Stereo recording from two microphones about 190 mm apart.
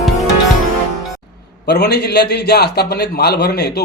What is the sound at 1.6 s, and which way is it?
A man's voice, 60° left (ahead or behind).